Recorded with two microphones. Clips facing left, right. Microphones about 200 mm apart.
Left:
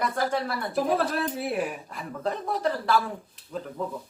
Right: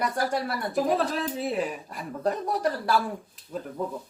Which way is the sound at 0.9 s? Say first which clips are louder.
Even; 5° left (ahead or behind).